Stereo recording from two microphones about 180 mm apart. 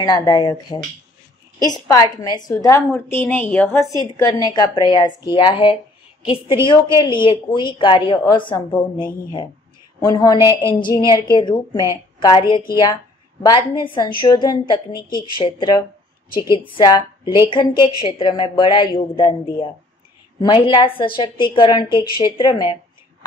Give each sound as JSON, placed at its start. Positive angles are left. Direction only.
{"t": 0.0, "sound": "a woman's voice", "side_deg": 20}
{"t": 7.0, "sound": "a woman's voice", "side_deg": 25}
{"t": 9.9, "sound": "a woman's voice", "side_deg": 20}
{"t": 10.4, "sound": "a sound", "side_deg": -15}
{"t": 10.9, "sound": "a woman's voice", "side_deg": 25}